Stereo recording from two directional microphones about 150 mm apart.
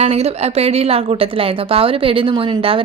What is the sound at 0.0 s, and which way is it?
A woman's voice, 45° right (ahead or behind).